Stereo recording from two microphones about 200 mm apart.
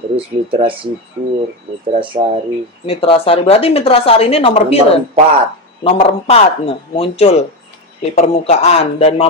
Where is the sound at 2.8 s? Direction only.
30° left (ahead or behind).